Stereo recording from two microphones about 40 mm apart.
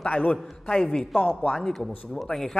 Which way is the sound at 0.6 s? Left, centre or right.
Centre.